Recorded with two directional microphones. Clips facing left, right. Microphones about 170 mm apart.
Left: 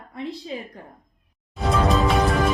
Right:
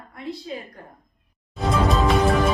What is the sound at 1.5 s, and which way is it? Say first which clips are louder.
Music: even; centre (ahead or behind).